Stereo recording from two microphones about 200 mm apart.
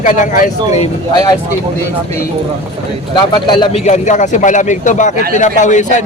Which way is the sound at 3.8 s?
35° left (ahead or behind).